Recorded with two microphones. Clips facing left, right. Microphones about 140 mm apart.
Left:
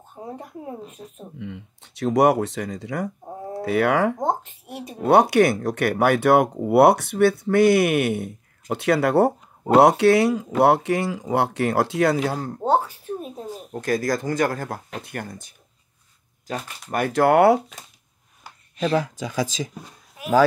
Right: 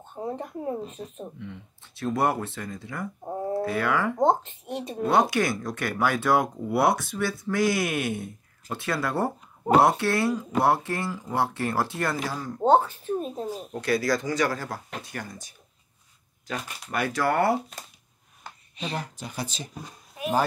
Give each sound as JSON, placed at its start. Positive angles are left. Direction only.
{"t": 0.4, "sound": "speech", "side_deg": 10}
{"t": 1.4, "sound": "speech", "side_deg": 80}
{"t": 4.2, "sound": "speech", "side_deg": 10}
{"t": 5.0, "sound": "speech", "side_deg": 65}
{"t": 12.7, "sound": "speech", "side_deg": 10}
{"t": 13.7, "sound": "speech", "side_deg": 45}
{"t": 16.9, "sound": "speech", "side_deg": 50}
{"t": 18.9, "sound": "speech", "side_deg": 90}